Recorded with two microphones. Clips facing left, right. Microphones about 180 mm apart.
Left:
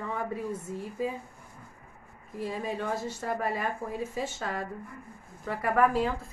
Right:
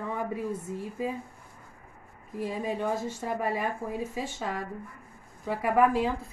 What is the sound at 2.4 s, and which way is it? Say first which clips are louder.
Speech: right 2 dB; 15° right (ahead or behind).